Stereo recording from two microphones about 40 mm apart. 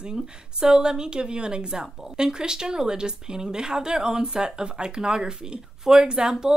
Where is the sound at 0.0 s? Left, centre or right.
Centre.